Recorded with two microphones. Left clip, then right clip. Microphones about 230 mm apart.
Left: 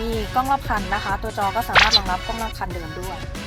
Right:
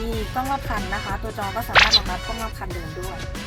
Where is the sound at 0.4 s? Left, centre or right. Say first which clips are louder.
Left 4 dB; centre.